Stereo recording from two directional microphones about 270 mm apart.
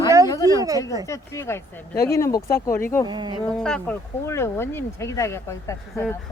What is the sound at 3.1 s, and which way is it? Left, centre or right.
Speech, centre.